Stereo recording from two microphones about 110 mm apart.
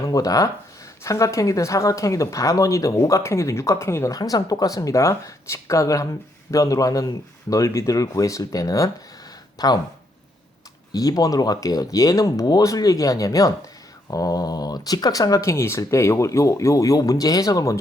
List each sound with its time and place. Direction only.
0.1 s speech: 35° left (ahead or behind)
10.9 s speech: 35° left (ahead or behind)